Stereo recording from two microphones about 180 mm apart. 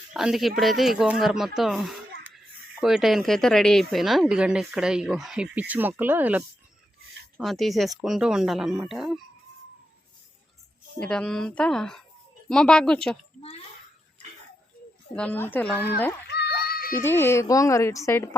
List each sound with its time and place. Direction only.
0.1 s speech: 5° right (ahead or behind)
11.0 s speech: 5° left (ahead or behind)
15.1 s speech: 10° left (ahead or behind)
16.2 s music: 65° left (ahead or behind)
17.0 s speech: 10° left (ahead or behind)